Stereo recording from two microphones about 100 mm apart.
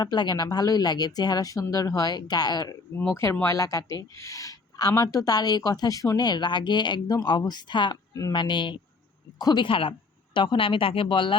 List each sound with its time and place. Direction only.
0.0 s speech: 45° left (ahead or behind)
3.1 s speech: 30° left (ahead or behind)
9.6 s speech: 60° left (ahead or behind)